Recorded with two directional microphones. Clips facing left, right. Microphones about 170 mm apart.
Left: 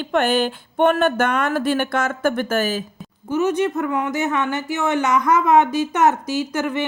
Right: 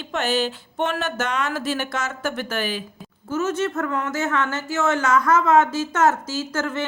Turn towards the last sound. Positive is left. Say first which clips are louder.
# left 3 dB
turn(degrees=15)  # may be behind; listen again after turning